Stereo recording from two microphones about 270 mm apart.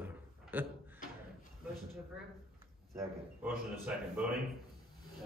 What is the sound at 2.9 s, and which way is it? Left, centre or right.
Speech, centre.